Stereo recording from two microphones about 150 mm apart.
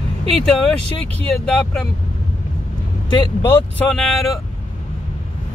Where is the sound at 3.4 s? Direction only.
15° left (ahead or behind).